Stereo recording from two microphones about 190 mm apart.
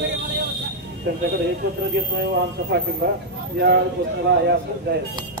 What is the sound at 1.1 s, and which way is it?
Speech, 65° right (ahead or behind).